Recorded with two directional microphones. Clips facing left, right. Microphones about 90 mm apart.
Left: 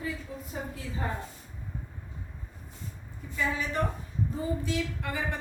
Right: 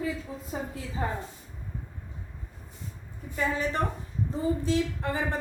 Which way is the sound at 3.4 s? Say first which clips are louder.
Right 2 dB; 40° right (ahead or behind).